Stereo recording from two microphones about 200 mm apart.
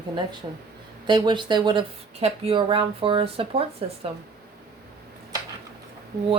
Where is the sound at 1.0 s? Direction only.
20° right (ahead or behind).